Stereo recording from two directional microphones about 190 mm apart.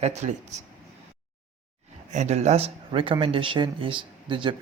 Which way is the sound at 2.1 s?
35° right (ahead or behind).